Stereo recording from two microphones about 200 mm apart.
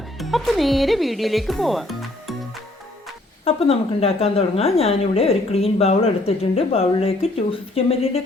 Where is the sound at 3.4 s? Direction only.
30° left (ahead or behind).